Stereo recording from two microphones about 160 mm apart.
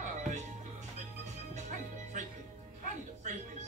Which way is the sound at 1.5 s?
50° right (ahead or behind).